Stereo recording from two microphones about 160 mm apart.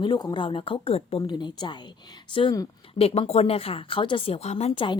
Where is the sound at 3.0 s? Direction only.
40° left (ahead or behind).